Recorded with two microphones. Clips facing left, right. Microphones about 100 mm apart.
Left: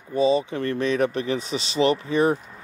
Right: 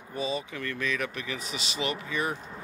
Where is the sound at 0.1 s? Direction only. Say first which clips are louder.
Left 12 dB; 30° left (ahead or behind).